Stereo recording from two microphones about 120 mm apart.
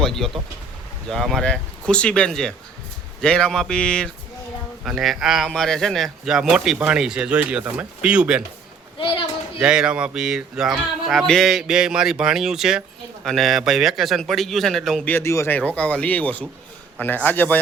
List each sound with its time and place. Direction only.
0.0 s speech: 5° left (ahead or behind)
9.0 s a sound: 45° left (ahead or behind)
9.6 s speech: 10° right (ahead or behind)
15.0 s speech: 20° left (ahead or behind)
15.5 s speech: 10° left (ahead or behind)